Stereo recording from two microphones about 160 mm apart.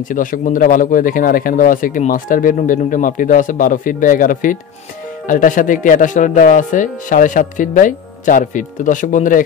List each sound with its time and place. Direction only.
0.0 s speech: 55° left (ahead or behind)